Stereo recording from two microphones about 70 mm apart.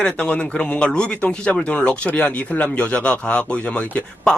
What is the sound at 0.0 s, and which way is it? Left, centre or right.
Speech, centre.